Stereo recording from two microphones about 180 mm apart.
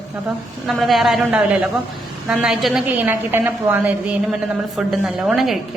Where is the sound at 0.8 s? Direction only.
Centre (ahead or behind).